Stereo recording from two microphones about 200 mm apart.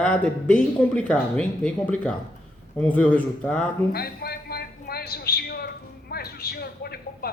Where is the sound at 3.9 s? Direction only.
50° left (ahead or behind).